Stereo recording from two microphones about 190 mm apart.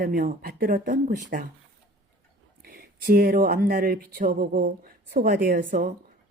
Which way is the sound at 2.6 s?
50° right (ahead or behind).